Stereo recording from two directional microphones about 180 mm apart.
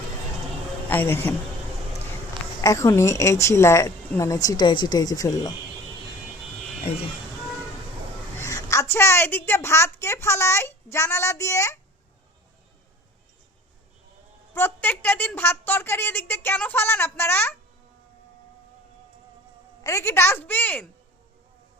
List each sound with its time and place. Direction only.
0.9 s a woman's voice: 10° left (ahead or behind)
2.6 s a woman's voice: 20° left (ahead or behind)
6.9 s speech: 30° left (ahead or behind)
8.4 s a woman's voice: 15° left (ahead or behind)
14.5 s a woman's voice: 10° left (ahead or behind)
19.8 s a woman's voice: 15° left (ahead or behind)